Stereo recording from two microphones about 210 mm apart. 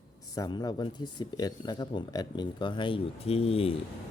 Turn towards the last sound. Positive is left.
turn(degrees=25)  # may be behind; listen again after turning